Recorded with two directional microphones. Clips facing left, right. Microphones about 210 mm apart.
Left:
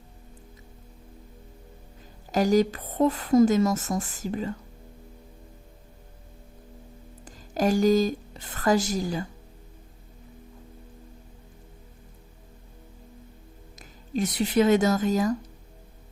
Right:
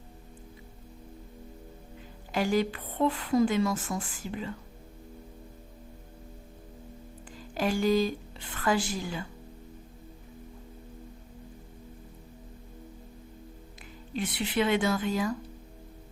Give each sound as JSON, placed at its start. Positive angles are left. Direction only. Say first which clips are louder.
{"t": 2.3, "sound": "a woman's voice", "louder": "left 6 dB", "side_deg": 40}
{"t": 7.3, "sound": "a woman's voice", "louder": "left 6 dB", "side_deg": 45}
{"t": 14.1, "sound": "speech", "louder": "left 6 dB", "side_deg": 40}